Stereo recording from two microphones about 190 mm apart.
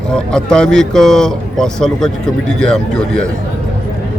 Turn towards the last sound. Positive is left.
turn(degrees=5)  # may be behind; listen again after turning